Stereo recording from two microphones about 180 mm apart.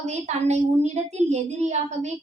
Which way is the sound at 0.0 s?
40° right (ahead or behind).